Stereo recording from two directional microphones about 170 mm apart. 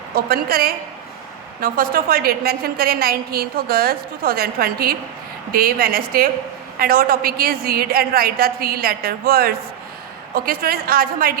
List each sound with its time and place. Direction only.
0.3 s a woman's voice: 60° right (ahead or behind)